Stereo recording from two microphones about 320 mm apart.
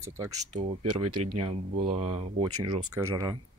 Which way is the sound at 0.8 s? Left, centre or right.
Right.